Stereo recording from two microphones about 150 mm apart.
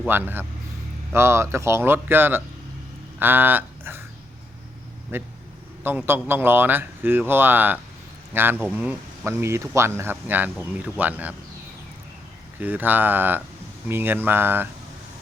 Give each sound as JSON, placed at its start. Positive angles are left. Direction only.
{"t": 0.1, "sound": "speech", "side_deg": -15}
{"t": 3.2, "sound": "a sound", "side_deg": -15}
{"t": 5.1, "sound": "speech", "side_deg": -15}
{"t": 12.5, "sound": "speech", "side_deg": -10}